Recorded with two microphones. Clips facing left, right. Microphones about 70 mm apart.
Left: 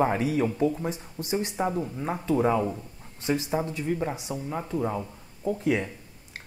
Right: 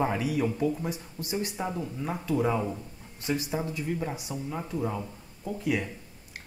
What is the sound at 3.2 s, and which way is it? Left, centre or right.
Speech, left.